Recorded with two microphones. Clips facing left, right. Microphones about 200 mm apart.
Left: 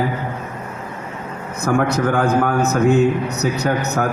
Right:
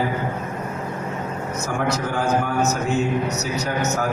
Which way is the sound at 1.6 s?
60° left (ahead or behind).